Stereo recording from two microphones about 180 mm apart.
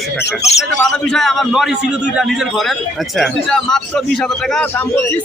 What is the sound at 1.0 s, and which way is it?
Speech, centre (ahead or behind).